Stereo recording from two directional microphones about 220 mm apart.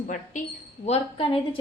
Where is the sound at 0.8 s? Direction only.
25° left (ahead or behind).